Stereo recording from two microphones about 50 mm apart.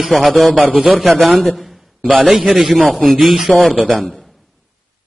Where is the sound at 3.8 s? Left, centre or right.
Right.